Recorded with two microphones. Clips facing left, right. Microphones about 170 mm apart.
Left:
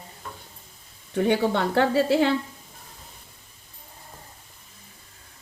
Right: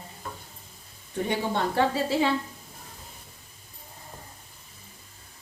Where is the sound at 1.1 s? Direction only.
70° left (ahead or behind).